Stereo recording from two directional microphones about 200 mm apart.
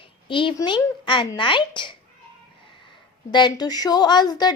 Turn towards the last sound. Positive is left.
turn(degrees=20)  # may be behind; listen again after turning